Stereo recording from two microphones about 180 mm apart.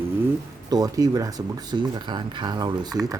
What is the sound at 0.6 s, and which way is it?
Speech, 20° right (ahead or behind).